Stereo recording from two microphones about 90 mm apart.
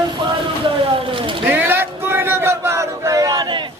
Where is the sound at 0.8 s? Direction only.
80° right.